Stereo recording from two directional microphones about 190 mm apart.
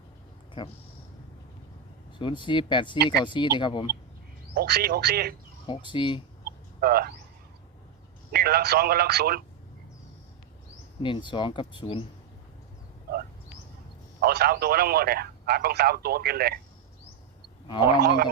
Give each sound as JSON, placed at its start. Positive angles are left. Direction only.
{"t": 0.6, "sound": "speech", "side_deg": 25}
{"t": 2.1, "sound": "speech", "side_deg": 25}
{"t": 4.5, "sound": "speech", "side_deg": -55}
{"t": 5.6, "sound": "speech", "side_deg": 25}
{"t": 6.4, "sound": "a sound", "side_deg": -55}
{"t": 8.3, "sound": "speech", "side_deg": -55}
{"t": 11.0, "sound": "speech", "side_deg": 25}
{"t": 14.2, "sound": "speech", "side_deg": -55}
{"t": 18.0, "sound": "speech", "side_deg": -55}